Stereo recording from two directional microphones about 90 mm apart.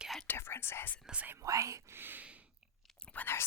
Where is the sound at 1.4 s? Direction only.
35° right (ahead or behind).